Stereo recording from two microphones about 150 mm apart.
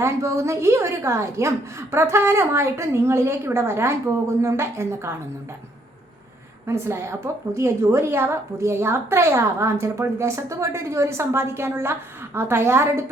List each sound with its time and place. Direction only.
0.0 s a woman's voice: 20° right (ahead or behind)
6.7 s a woman's voice: 15° right (ahead or behind)